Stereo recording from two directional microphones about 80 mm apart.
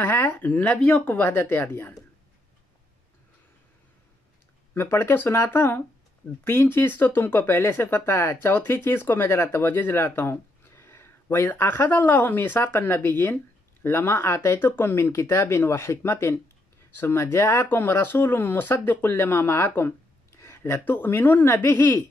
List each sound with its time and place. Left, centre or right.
0.0 s speech: left
4.7 s speech: left